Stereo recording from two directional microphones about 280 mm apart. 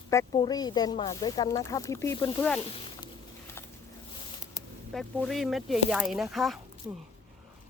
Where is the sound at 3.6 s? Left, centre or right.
Centre.